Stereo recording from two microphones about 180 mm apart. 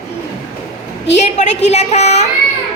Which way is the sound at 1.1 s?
40° left (ahead or behind).